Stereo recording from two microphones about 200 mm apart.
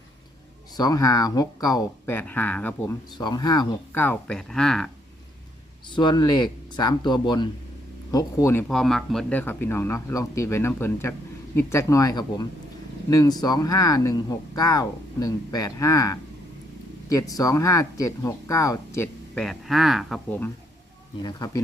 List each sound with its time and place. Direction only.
0.8 s speech: 20° left (ahead or behind)
3.2 s speech: 20° left (ahead or behind)
4.0 s speech: 5° left (ahead or behind)
5.9 s speech: 20° left (ahead or behind)
8.7 s speech: centre (ahead or behind)
21.2 s speech: 20° left (ahead or behind)